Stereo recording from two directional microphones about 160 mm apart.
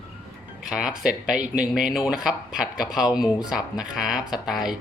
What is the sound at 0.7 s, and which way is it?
Speech, 5° right (ahead or behind).